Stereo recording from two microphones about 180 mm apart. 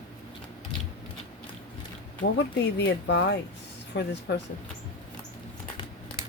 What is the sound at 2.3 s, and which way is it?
Speech, 75° left (ahead or behind).